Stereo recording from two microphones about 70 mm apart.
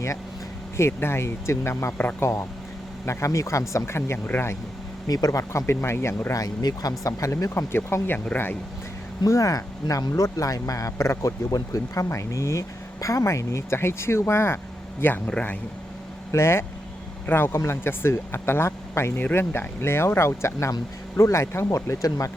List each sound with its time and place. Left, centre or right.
0.8 s speech: left
2.0 s speech: left
3.1 s speech: left
5.0 s speech: left
5.4 s speech: left
6.3 s speech: left
7.0 s speech: left
9.2 s speech: left
11.2 s speech: left
15.3 s a man's voice: centre
16.3 s speech: left